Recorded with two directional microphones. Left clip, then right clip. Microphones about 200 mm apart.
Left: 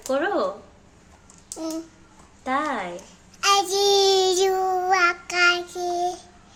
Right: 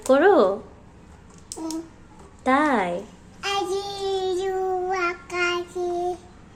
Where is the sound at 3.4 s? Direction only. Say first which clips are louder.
Left 6 dB; 65° left (ahead or behind).